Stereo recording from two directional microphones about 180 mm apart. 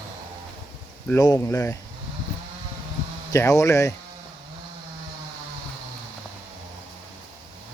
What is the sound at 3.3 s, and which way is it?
Speech, 15° left (ahead or behind).